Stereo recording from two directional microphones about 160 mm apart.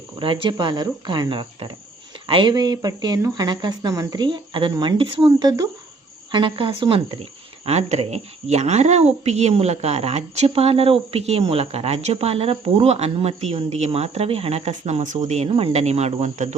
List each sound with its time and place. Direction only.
0.2 s speech: 30° right (ahead or behind)